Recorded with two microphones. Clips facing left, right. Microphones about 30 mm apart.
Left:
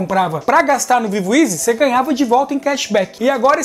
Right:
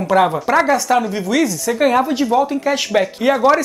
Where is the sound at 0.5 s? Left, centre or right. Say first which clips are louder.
Left 2 dB; centre.